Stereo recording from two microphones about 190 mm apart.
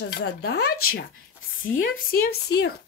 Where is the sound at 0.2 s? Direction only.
60° left (ahead or behind).